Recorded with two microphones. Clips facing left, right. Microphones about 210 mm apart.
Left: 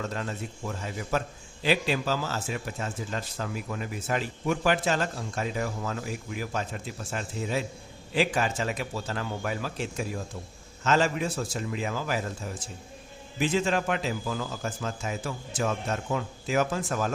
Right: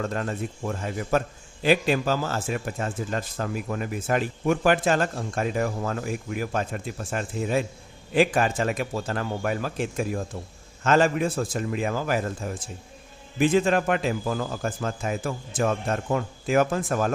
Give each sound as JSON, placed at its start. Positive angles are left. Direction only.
{"t": 0.0, "sound": "a man's voice", "side_deg": -50}